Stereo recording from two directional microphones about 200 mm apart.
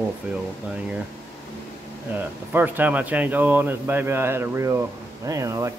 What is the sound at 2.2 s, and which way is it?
Speech, 10° right (ahead or behind).